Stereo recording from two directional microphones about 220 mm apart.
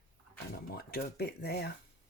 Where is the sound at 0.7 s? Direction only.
45° left (ahead or behind).